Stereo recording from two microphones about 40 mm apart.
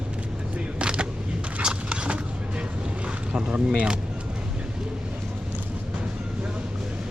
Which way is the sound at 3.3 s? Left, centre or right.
Right.